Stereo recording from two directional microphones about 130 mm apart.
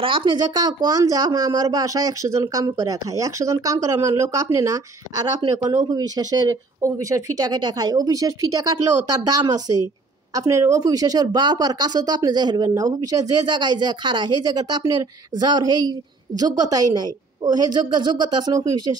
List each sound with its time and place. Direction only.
0.0 s speech: 40° right (ahead or behind)
5.9 s speech: 30° right (ahead or behind)